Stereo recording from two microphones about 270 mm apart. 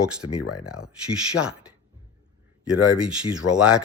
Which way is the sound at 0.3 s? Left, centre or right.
Left.